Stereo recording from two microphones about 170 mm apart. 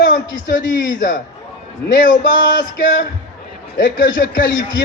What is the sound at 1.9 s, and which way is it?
Speech, 55° left (ahead or behind).